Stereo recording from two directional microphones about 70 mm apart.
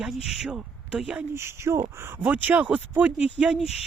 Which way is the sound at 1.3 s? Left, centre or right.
Right.